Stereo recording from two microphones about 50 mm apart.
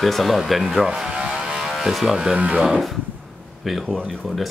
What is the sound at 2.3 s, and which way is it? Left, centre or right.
Speech, right.